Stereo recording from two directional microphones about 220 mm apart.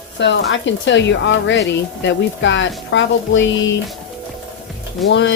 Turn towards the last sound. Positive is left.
turn(degrees=55)  # may be behind; listen again after turning